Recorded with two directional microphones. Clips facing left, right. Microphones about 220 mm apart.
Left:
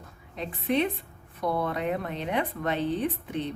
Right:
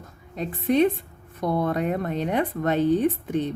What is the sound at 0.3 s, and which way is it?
Speech, 45° right (ahead or behind).